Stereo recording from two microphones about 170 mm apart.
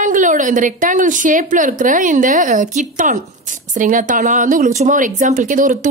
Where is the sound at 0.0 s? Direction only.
50° right (ahead or behind).